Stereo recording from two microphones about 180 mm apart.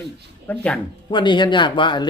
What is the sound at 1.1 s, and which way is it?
Speech, 25° left (ahead or behind).